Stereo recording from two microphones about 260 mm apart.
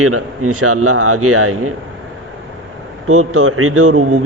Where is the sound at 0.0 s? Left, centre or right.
Right.